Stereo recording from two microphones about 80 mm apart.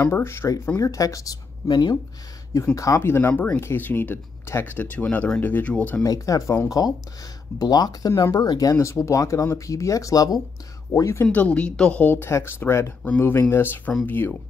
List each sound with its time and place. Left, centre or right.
0.0 s speech: left
1.7 s speech: left
2.7 s speech: left
3.0 s speech: left
6.0 s speech: left
7.5 s speech: left
8.7 s speech: left
11.2 s a woman's voice: centre
12.3 s speech: left